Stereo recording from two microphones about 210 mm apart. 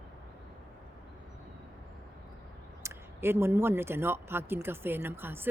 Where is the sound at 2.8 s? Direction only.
10° right (ahead or behind).